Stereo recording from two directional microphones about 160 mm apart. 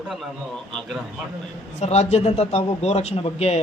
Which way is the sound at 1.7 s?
45° left (ahead or behind).